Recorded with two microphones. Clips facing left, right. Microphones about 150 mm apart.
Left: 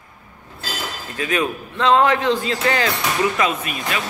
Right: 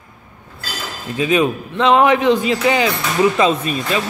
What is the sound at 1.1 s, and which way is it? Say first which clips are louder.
A man's voice: right 6 dB; 20° right (ahead or behind).